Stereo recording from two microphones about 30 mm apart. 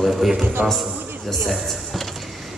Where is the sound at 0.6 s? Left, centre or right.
Right.